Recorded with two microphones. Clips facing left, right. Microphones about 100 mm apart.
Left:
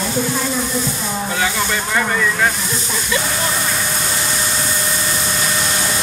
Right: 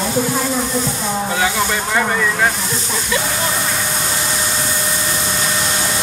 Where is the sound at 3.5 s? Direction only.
35° right (ahead or behind).